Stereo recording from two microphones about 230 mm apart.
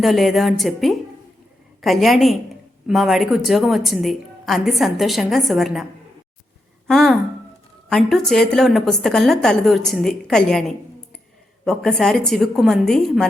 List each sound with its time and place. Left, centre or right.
0.0 s a woman's voice: centre
6.8 s a woman's voice: centre